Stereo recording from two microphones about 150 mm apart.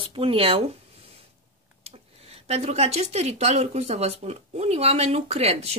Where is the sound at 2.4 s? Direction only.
45° right (ahead or behind).